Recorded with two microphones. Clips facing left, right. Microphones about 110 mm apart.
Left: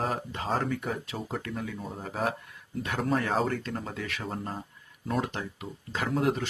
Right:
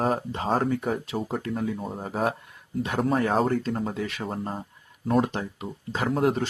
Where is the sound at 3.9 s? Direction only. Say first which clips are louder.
Right 4 dB; 20° right (ahead or behind).